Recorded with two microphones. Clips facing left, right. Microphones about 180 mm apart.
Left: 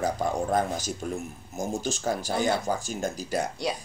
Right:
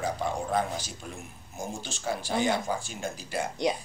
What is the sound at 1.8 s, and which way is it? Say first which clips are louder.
Speech: left 5 dB; 45° left (ahead or behind).